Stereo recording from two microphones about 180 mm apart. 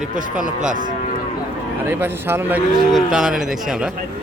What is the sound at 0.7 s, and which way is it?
Moo, 45° right (ahead or behind).